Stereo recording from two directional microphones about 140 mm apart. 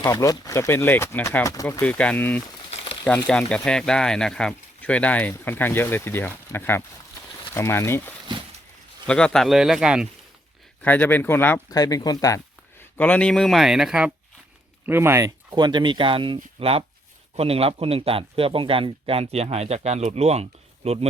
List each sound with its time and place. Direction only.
0.0 s speech: 20° left (ahead or behind)
9.0 s speech: 5° left (ahead or behind)
10.8 s speech: 15° left (ahead or behind)
11.7 s speech: 25° left (ahead or behind)
13.0 s speech: 10° left (ahead or behind)
14.8 s a man's voice: 15° right (ahead or behind); by 21.1 s 45° right (ahead or behind)